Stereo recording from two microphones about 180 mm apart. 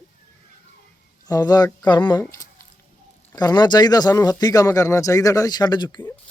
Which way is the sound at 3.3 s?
20° left (ahead or behind).